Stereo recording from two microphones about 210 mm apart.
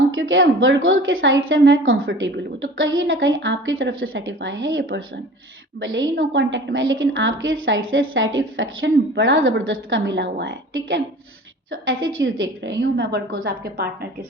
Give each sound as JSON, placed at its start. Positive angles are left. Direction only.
{"t": 0.2, "sound": "a woman's voice", "side_deg": -70}